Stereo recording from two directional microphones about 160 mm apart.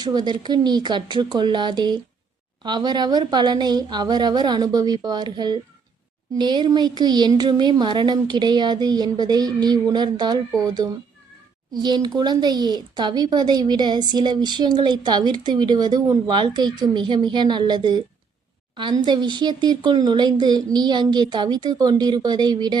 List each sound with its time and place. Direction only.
0.0 s speech: 25° right (ahead or behind)